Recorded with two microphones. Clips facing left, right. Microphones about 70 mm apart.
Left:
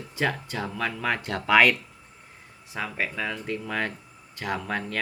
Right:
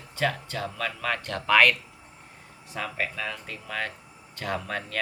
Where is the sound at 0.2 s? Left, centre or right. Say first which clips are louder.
Even; centre.